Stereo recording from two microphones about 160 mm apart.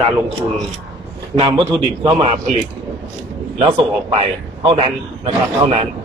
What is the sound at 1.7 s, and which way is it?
Speech, 25° right (ahead or behind).